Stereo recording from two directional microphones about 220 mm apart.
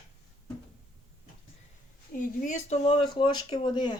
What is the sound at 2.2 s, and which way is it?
Speech, 35° left (ahead or behind).